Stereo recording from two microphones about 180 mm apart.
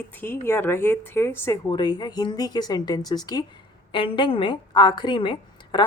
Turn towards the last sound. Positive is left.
turn(degrees=25)  # may be behind; listen again after turning